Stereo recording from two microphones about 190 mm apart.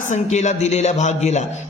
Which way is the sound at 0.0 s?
40° left (ahead or behind).